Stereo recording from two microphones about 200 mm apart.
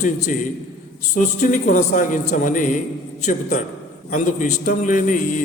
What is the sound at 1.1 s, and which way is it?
A man's voice, 40° left (ahead or behind).